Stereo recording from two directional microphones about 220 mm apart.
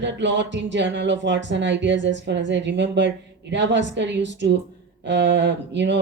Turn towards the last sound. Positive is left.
turn(degrees=-55)  # may be behind; listen again after turning